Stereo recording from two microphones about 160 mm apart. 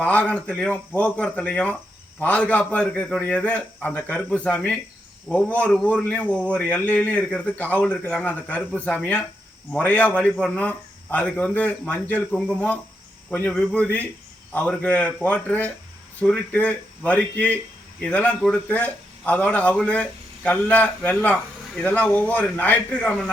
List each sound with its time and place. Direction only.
0.0 s speech: 10° left (ahead or behind)